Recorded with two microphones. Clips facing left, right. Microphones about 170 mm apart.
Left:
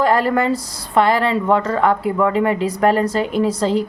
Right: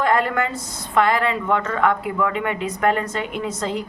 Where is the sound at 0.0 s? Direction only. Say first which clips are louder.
Left 4 dB; 35° left (ahead or behind).